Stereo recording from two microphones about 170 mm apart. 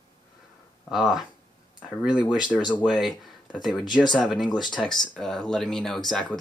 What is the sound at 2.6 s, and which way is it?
Speech, 25° left (ahead or behind).